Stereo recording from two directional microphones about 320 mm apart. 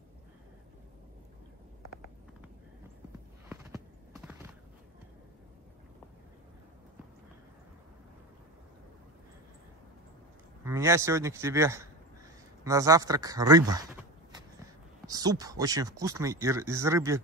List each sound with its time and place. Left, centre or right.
3.4 s clip-clop: centre
10.6 s a man's voice: centre
15.0 s speech: centre